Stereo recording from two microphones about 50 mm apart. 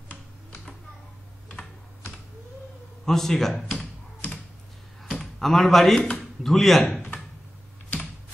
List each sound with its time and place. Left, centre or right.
1.5 s typing: left
3.1 s a man's voice: centre
5.2 s speech: centre